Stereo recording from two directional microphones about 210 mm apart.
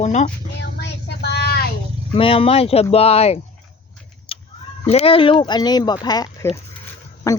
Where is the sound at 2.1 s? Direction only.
25° left (ahead or behind).